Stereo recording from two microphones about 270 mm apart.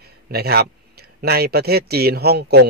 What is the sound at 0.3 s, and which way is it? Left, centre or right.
Speech, right.